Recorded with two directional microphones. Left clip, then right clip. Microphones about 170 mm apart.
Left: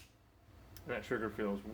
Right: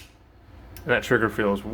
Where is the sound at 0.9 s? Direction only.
40° right (ahead or behind).